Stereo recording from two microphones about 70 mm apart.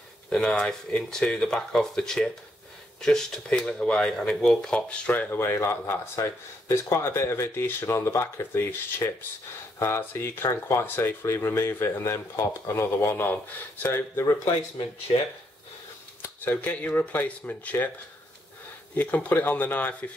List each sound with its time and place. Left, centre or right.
0.3 s speech: centre; by 14.2 s left
16.2 s speech: left
18.9 s speech: left